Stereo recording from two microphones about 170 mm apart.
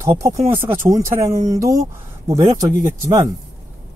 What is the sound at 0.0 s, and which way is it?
Speech, 20° right (ahead or behind).